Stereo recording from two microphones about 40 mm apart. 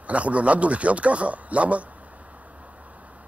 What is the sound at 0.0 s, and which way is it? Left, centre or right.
A man's voice, right.